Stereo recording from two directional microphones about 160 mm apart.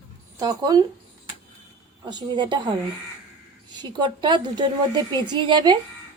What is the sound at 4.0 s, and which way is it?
A woman's voice, 30° right (ahead or behind).